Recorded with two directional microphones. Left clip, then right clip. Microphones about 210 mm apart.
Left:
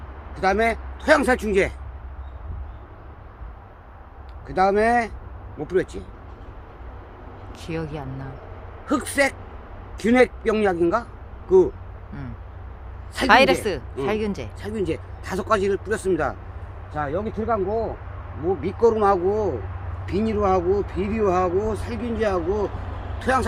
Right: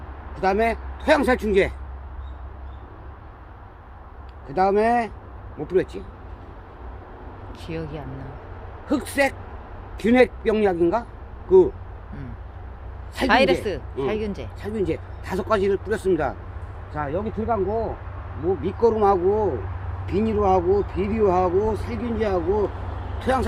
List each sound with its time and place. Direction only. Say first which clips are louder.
0.3 s speech: left 1 dB; 10° left (ahead or behind)
4.4 s speech: left 1 dB; 10° left (ahead or behind)
7.6 s a woman's voice: left 2 dB; 20° left (ahead or behind)
13.1 s a woman's voice: left 3 dB; 15° left (ahead or behind)
14.6 s a woman's voice: right 1 dB; 10° left (ahead or behind)